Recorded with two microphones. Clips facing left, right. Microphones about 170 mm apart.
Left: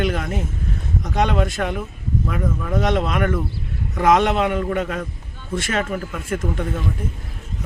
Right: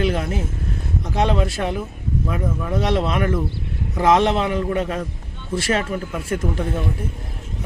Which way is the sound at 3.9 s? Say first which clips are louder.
Even; 30° right (ahead or behind).